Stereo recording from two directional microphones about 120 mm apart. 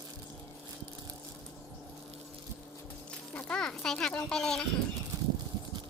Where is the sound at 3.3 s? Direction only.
10° left (ahead or behind).